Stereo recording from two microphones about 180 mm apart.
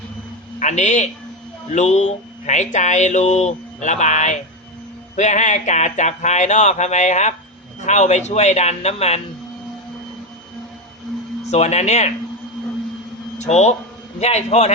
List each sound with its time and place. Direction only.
0.6 s speech: 40° left (ahead or behind)
11.5 s speech: 40° left (ahead or behind)
13.4 s speech: 40° left (ahead or behind)